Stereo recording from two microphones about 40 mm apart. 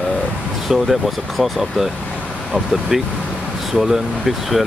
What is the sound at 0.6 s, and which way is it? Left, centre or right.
Speech, centre.